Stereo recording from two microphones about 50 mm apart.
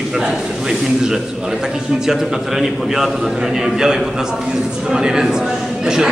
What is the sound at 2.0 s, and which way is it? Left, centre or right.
A man's voice, centre.